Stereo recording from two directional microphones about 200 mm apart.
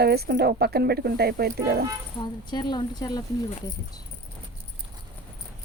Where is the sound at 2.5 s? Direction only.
20° left (ahead or behind).